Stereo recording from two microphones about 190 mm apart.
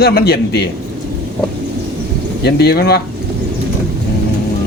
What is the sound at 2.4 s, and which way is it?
Speech, 60° left (ahead or behind).